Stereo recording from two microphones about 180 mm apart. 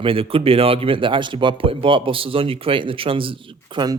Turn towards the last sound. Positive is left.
turn(degrees=-25)  # may be behind; listen again after turning